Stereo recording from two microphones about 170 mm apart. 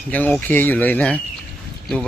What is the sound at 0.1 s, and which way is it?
A man's voice, 10° left (ahead or behind).